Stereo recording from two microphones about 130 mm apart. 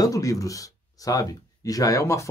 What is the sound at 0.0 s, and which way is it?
Speech, 25° left (ahead or behind).